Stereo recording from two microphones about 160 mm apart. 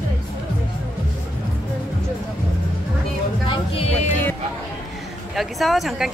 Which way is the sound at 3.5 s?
35° left (ahead or behind).